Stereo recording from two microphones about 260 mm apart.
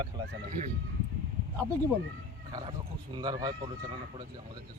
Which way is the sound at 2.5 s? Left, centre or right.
Centre.